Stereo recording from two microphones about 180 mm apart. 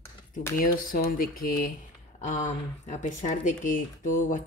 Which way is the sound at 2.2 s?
45° left (ahead or behind).